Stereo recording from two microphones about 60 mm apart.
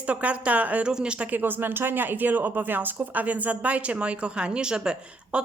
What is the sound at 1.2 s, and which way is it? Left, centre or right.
Speech, right.